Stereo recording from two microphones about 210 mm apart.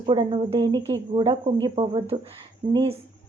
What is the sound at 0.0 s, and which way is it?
A woman's voice, 25° right (ahead or behind).